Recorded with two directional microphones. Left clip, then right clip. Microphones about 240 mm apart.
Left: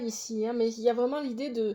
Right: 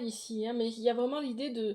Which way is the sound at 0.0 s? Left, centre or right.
Left.